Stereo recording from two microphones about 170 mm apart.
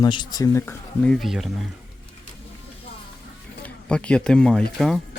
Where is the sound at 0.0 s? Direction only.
25° left (ahead or behind); by 1.5 s centre (ahead or behind).